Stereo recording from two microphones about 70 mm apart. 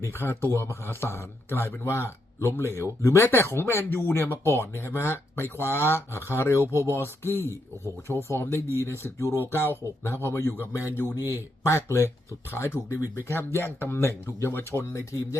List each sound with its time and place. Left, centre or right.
0.0 s speech: left
9.2 s speech: right
9.5 s speech: left